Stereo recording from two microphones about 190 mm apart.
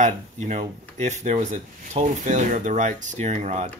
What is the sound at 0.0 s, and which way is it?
Speech, 35° right (ahead or behind).